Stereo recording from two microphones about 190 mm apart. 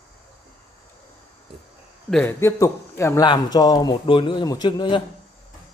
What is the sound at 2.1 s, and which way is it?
A man's voice, 10° left (ahead or behind).